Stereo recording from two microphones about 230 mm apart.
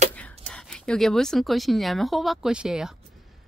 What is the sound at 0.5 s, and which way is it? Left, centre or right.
Speech, centre.